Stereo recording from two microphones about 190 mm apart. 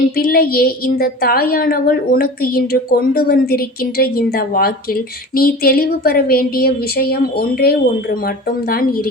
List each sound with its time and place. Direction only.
0.2 s a woman's voice: 50° left (ahead or behind)